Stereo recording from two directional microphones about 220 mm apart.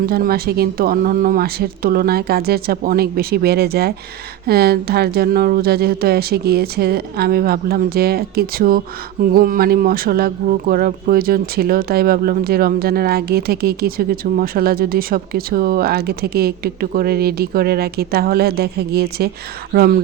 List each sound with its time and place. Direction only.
0.0 s speech: 45° right (ahead or behind)